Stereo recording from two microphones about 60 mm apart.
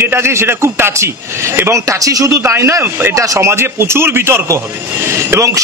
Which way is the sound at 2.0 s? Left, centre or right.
Right.